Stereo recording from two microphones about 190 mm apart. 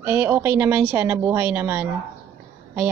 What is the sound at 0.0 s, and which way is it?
Speech, 10° right (ahead or behind).